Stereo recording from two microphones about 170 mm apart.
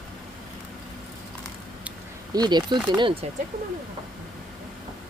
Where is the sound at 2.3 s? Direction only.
25° right (ahead or behind).